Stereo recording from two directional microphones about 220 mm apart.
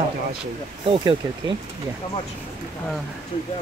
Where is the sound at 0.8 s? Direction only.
20° right (ahead or behind).